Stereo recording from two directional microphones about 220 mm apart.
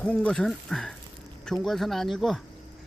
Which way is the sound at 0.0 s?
5° left (ahead or behind).